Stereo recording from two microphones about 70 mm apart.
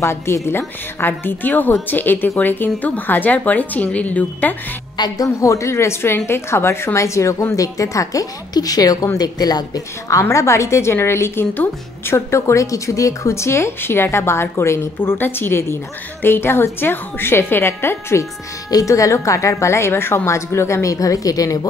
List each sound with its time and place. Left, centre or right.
0.0 s a woman's voice: left
4.9 s a woman's voice: left
10.3 s speech: left
11.5 s a woman's voice: left
12.3 s speech: left
18.7 s a woman's voice: left